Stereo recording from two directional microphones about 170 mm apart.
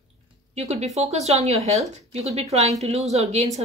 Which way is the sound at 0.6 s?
40° right (ahead or behind).